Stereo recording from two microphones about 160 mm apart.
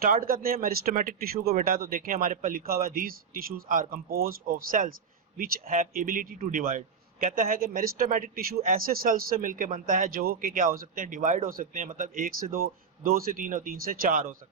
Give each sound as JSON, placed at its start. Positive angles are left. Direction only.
{"t": 0.0, "sound": "a man's voice", "side_deg": -65}